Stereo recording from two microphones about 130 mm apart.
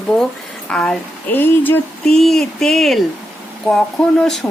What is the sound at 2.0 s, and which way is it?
Speech, 5° left (ahead or behind).